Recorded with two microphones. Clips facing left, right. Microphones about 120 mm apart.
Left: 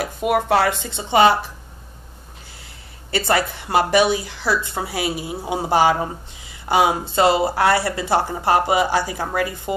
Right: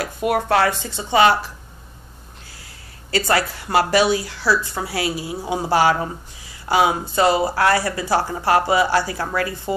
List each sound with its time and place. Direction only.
0.2 s speech: centre (ahead or behind)
0.7 s a woman's voice: 60° left (ahead or behind)
0.9 s speech: 25° left (ahead or behind)
3.1 s speech: 25° left (ahead or behind)